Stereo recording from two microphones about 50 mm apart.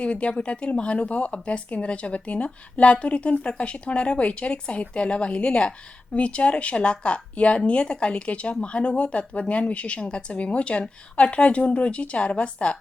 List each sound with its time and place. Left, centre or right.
0.0 s speech: left